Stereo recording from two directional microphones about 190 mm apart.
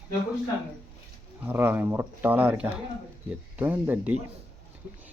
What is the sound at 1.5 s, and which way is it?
Speech, 10° right (ahead or behind).